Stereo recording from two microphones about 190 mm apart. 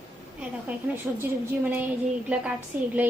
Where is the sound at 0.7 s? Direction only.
10° right (ahead or behind).